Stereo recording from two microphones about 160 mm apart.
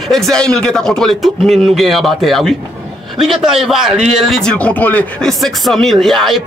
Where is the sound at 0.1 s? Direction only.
5° left (ahead or behind).